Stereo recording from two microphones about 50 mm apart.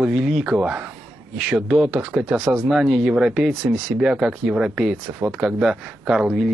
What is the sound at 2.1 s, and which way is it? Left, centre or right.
Speech, right.